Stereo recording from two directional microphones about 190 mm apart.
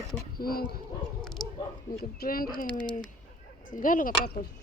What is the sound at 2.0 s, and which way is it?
Speech, 55° left (ahead or behind).